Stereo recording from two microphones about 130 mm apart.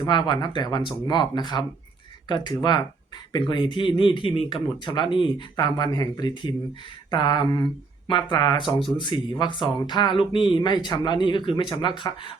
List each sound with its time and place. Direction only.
0.0 s speech: 35° left (ahead or behind)